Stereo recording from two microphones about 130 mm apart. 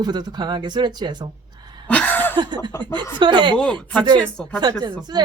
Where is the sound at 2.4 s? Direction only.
35° right (ahead or behind).